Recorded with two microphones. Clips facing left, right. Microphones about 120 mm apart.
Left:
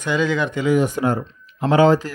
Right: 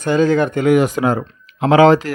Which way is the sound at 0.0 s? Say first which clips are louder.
Right 6 dB; 45° right (ahead or behind).